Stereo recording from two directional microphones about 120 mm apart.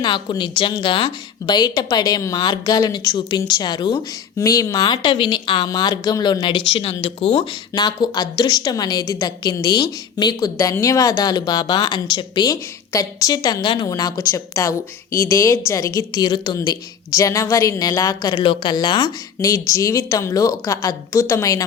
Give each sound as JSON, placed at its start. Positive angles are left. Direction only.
{"t": 0.0, "sound": "a woman's voice", "side_deg": 40}
{"t": 4.4, "sound": "a woman's voice", "side_deg": 25}
{"t": 7.0, "sound": "speech", "side_deg": 55}
{"t": 7.7, "sound": "a woman's voice", "side_deg": 35}
{"t": 19.4, "sound": "speech", "side_deg": 25}